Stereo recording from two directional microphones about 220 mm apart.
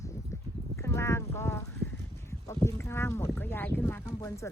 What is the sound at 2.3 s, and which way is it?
Speech, 15° left (ahead or behind).